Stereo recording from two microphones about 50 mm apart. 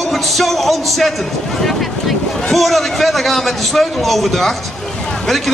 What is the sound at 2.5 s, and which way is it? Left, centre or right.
Speech, centre.